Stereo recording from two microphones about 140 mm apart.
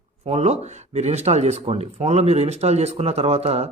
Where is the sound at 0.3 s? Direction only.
50° right (ahead or behind).